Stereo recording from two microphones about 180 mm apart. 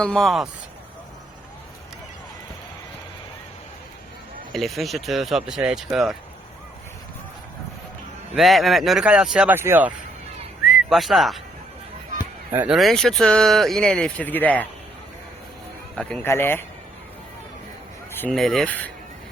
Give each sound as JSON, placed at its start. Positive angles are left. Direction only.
{"t": 0.0, "sound": "speech", "side_deg": 5}
{"t": 4.5, "sound": "speech", "side_deg": 0}
{"t": 8.4, "sound": "speech", "side_deg": 0}
{"t": 10.7, "sound": "speech", "side_deg": 0}
{"t": 12.5, "sound": "speech", "side_deg": -5}
{"t": 16.0, "sound": "a man's voice", "side_deg": 10}
{"t": 18.2, "sound": "speech", "side_deg": 5}